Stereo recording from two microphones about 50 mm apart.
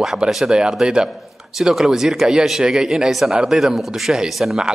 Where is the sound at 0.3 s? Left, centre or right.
Centre.